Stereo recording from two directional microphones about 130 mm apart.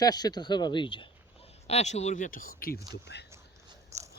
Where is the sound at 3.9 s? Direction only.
25° right (ahead or behind).